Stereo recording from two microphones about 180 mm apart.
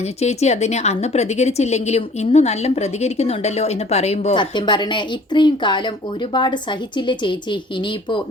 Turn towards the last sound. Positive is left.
turn(degrees=25)  # may be behind; listen again after turning